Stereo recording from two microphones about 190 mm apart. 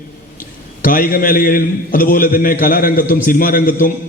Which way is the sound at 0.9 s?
45° left (ahead or behind).